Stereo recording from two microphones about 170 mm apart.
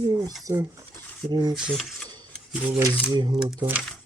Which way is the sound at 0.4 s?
15° right (ahead or behind).